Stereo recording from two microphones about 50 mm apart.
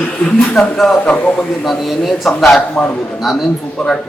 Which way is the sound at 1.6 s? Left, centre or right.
Centre.